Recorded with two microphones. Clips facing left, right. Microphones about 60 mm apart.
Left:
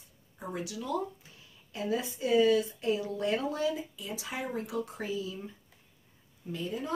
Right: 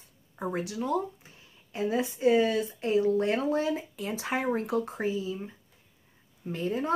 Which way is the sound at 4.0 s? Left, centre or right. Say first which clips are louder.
Right 6 dB; right.